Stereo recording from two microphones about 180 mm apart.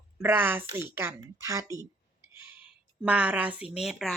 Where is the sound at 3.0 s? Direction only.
5° right (ahead or behind).